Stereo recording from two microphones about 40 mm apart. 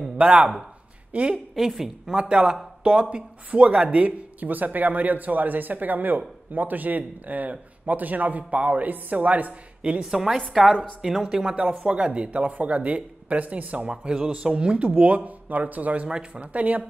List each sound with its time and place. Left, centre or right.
0.4 s speech: centre
1.3 s a woman's voice: centre
2.2 s speech: centre
2.8 s speech: right
9.8 s a woman's voice: right
10.0 s a woman's voice: centre
11.2 s speech: right
12.3 s speech: right
13.8 s speech: right
14.9 s speech: right
16.1 s speech: right
16.5 s speech: right